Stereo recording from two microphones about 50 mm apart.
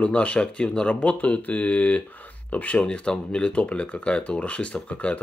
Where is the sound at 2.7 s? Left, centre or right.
Centre.